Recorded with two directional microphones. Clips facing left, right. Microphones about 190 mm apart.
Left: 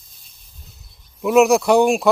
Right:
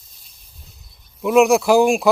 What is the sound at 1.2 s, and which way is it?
Speech, centre (ahead or behind).